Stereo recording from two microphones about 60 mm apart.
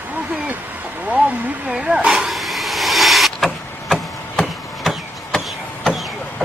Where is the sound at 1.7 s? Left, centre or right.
Centre.